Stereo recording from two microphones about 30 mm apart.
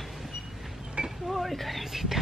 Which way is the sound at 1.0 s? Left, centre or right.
Right.